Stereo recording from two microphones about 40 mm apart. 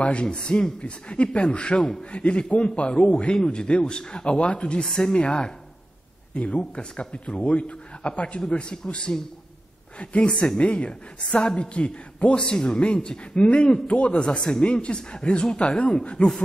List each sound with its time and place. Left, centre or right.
0.0 s speech: left
4.8 s speech: centre
5.1 s speech: left
12.4 s speech: centre; by 14.2 s left
14.2 s speech: left